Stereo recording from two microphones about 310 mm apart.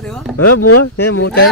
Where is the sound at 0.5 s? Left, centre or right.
Left.